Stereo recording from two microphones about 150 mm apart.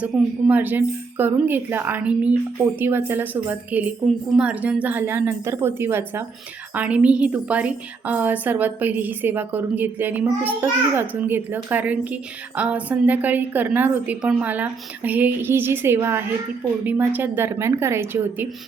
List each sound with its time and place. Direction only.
0.0 s a woman's voice: 10° right (ahead or behind)